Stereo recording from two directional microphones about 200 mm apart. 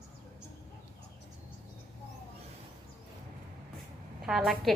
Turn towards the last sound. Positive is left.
turn(degrees=0)  # may be behind; listen again after turning